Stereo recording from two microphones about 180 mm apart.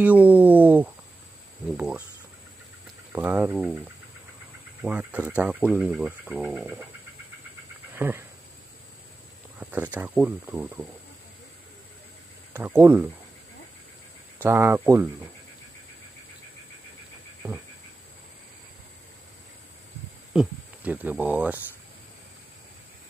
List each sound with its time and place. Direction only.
0.0 s speech: 10° right (ahead or behind)
3.1 s speech: 10° right (ahead or behind)
4.8 s speech: 10° right (ahead or behind)
7.9 s speech: 10° right (ahead or behind)
9.6 s speech: 10° right (ahead or behind)
12.5 s speech: 15° right (ahead or behind)
14.4 s speech: 10° right (ahead or behind)
20.3 s speech: 10° right (ahead or behind)